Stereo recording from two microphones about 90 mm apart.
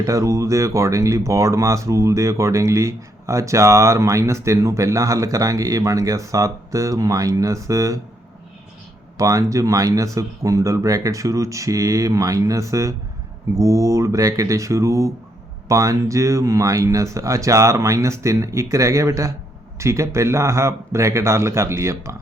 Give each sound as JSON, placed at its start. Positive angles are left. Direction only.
{"t": 0.0, "sound": "speech", "side_deg": -35}
{"t": 9.1, "sound": "speech", "side_deg": -35}